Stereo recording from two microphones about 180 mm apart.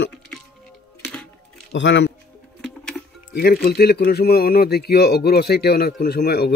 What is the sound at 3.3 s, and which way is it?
Speech, 60° left (ahead or behind).